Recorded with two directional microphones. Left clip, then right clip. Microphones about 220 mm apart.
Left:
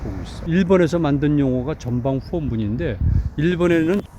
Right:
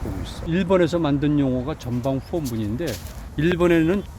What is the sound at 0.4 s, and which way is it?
Speech, 15° left (ahead or behind).